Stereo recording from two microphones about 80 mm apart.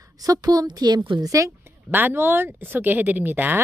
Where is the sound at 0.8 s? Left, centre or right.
Right.